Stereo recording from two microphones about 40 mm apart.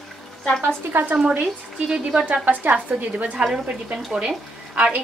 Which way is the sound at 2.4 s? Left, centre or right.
Right.